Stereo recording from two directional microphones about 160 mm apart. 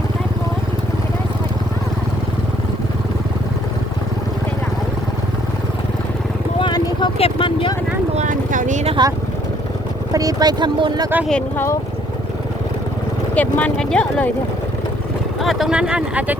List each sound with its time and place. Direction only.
6.6 s vehicle: 25° left (ahead or behind)
8.1 s a sound: 50° right (ahead or behind)
10.1 s speech: 20° right (ahead or behind)
11.3 s speech: 10° left (ahead or behind)
13.3 s speech: 10° left (ahead or behind)
15.4 s speech: centre (ahead or behind)